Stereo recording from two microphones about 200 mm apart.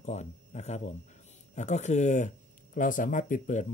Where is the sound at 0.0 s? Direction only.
35° left (ahead or behind).